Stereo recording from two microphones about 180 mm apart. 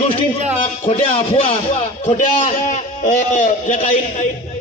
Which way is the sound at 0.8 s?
40° left (ahead or behind).